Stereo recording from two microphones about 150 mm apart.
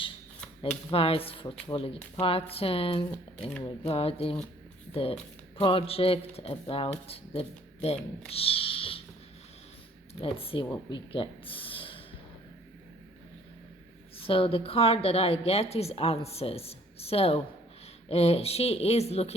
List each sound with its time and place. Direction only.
0.9 s speech: 40° left (ahead or behind)
5.5 s speech: 40° left (ahead or behind)
8.3 s a sound: 40° left (ahead or behind)
10.2 s speech: 40° left (ahead or behind)
14.2 s speech: 35° left (ahead or behind)